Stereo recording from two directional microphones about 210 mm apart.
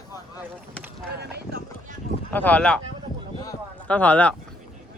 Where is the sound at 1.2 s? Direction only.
50° right (ahead or behind).